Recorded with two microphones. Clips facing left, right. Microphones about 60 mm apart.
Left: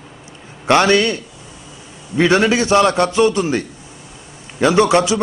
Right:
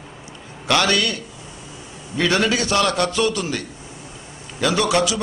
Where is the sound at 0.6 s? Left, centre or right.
Left.